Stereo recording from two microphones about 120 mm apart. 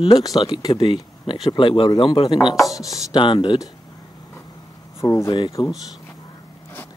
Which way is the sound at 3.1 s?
40° left (ahead or behind).